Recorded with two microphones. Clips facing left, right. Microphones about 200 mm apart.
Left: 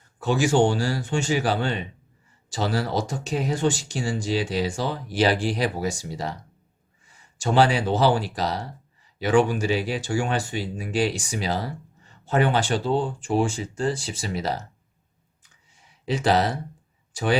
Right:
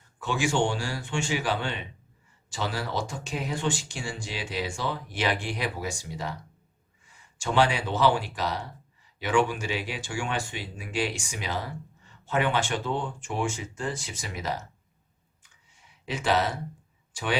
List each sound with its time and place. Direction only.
0.2 s speech: 40° left (ahead or behind)
7.3 s speech: 40° left (ahead or behind)
16.0 s speech: 35° left (ahead or behind)